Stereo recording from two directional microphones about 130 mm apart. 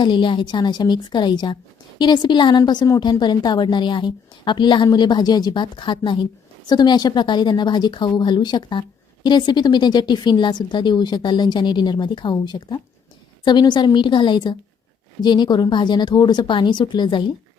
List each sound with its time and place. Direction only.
0.0 s a woman's voice: 35° left (ahead or behind)